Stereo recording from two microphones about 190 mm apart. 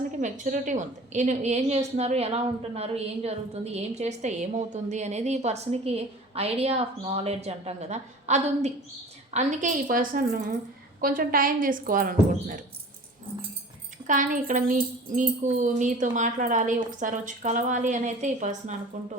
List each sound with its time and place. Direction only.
0.2 s a woman's voice: 40° right (ahead or behind)
14.1 s a woman's voice: 45° right (ahead or behind)